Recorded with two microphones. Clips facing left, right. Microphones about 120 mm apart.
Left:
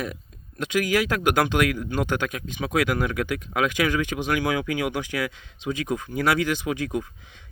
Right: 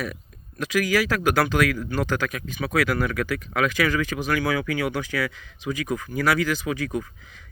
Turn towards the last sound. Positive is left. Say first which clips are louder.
# even
turn(degrees=25)  # may be behind; listen again after turning